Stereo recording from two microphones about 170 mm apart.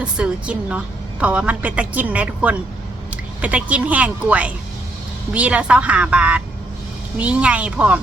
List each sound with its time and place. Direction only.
0.0 s a woman's voice: 5° right (ahead or behind)